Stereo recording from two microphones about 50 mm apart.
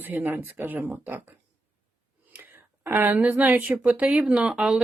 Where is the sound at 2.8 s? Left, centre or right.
Right; by 4.8 s centre.